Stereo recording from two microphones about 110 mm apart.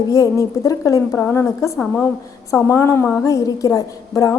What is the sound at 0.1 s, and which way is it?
A woman's voice, 30° left (ahead or behind).